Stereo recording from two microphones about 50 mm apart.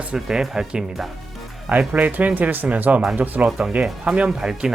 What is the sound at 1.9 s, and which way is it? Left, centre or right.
Speech, right.